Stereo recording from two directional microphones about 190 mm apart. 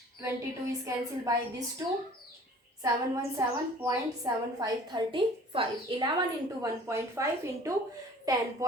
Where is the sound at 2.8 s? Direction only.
15° right (ahead or behind).